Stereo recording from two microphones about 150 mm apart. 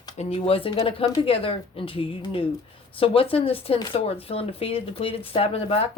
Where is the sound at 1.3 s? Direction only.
40° left (ahead or behind).